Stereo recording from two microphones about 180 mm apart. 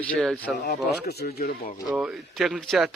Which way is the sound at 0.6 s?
65° left (ahead or behind).